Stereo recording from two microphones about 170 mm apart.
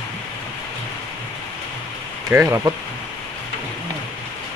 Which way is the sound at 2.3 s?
15° right (ahead or behind).